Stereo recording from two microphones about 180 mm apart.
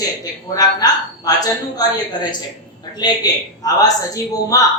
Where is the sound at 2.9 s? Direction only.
20° left (ahead or behind).